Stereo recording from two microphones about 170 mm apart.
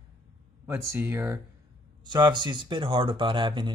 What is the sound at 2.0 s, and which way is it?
Speech, 25° right (ahead or behind).